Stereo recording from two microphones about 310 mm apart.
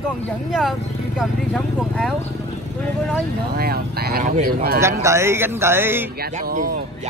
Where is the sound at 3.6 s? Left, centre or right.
Right.